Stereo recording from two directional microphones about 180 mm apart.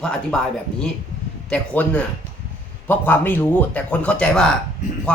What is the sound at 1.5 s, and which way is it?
Speech, 5° left (ahead or behind).